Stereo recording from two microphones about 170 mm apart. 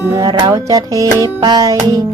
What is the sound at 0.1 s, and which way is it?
Music, 25° right (ahead or behind).